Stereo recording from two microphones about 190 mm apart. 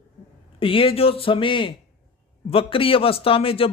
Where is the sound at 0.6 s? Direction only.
30° left (ahead or behind).